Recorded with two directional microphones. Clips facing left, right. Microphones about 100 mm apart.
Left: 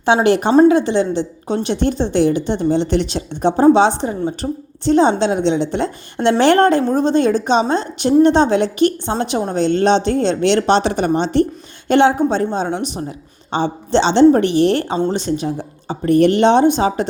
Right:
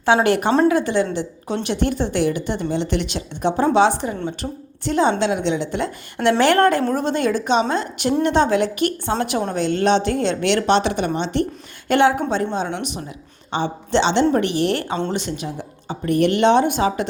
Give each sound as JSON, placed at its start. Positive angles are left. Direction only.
{"t": 0.0, "sound": "a woman's voice", "side_deg": 25}
{"t": 4.4, "sound": "a woman's voice", "side_deg": 20}